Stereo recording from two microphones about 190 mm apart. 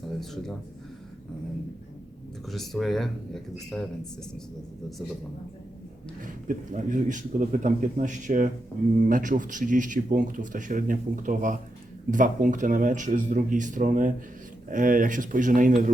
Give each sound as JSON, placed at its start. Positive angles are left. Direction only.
{"t": 2.5, "sound": "speech", "side_deg": 0}
{"t": 6.5, "sound": "a man's voice", "side_deg": -45}